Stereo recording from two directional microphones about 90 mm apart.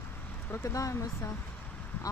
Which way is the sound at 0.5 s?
35° left (ahead or behind).